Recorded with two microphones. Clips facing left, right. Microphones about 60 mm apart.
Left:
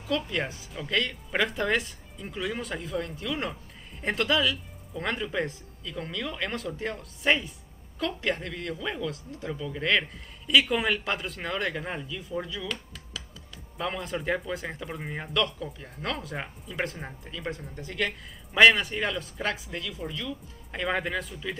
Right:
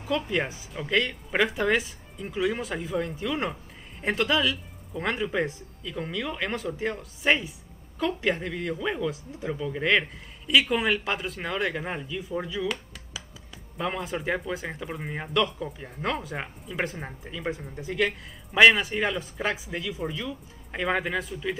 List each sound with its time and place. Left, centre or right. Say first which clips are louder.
0.0 s speech: right 2 dB; centre
12.6 s dishes: right 5 dB; centre
13.7 s speech: right 2 dB; centre